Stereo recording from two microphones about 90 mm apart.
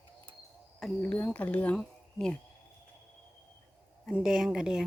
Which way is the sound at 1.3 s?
15° left (ahead or behind).